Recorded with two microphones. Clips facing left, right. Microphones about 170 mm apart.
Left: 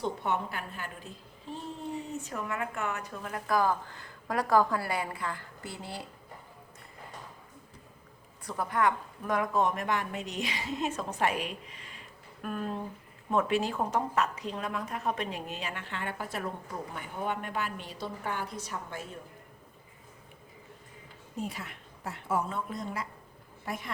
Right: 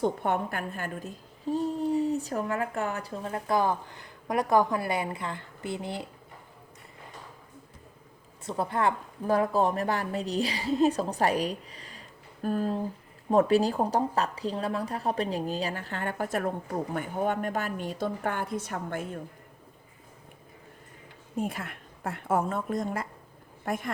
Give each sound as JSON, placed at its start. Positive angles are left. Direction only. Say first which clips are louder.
{"t": 0.0, "sound": "a woman's voice", "louder": "right 4 dB", "side_deg": -50}
{"t": 8.4, "sound": "speech", "louder": "right 1 dB", "side_deg": -25}
{"t": 21.3, "sound": "a woman's voice", "louder": "right 5 dB", "side_deg": -55}